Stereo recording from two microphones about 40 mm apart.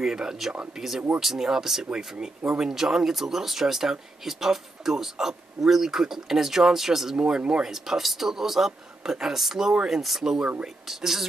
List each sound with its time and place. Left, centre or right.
0.0 s speech: centre
2.7 s speech: centre
7.2 s speech: right
7.7 s speech: centre